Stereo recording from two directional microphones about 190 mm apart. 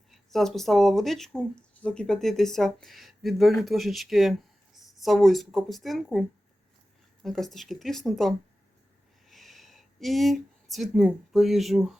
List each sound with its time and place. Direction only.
0.1 s speech: centre (ahead or behind)